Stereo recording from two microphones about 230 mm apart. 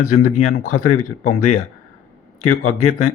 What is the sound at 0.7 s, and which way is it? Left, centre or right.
Speech, left.